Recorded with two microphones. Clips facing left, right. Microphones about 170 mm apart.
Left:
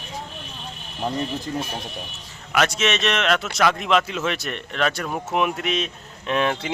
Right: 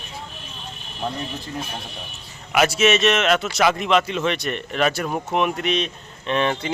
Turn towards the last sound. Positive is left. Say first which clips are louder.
# right 1 dB
turn(degrees=5)  # may be behind; listen again after turning